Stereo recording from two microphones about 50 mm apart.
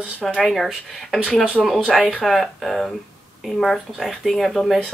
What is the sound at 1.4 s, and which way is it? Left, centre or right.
Speech, centre.